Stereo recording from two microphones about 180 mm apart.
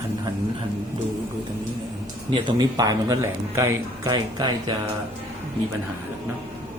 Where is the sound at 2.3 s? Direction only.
25° right (ahead or behind).